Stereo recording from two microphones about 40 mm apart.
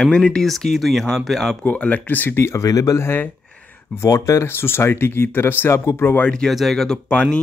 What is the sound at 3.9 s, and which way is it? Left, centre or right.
Speech, left.